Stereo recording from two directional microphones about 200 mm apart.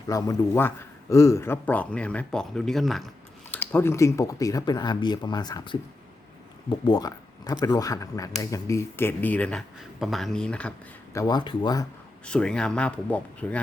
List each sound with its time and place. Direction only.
0.1 s speech: 15° left (ahead or behind)
12.2 s speech: 5° left (ahead or behind)